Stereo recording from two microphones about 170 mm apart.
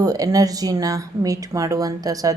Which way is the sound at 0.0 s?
20° right (ahead or behind).